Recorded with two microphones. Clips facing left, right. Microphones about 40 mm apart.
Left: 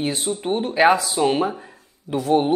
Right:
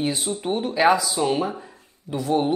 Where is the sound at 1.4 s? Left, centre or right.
Centre.